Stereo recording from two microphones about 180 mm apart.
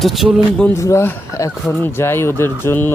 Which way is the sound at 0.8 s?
15° left (ahead or behind).